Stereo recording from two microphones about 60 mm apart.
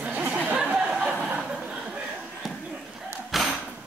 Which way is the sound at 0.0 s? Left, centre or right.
Right.